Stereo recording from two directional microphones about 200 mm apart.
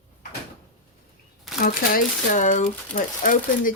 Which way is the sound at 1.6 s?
40° left (ahead or behind).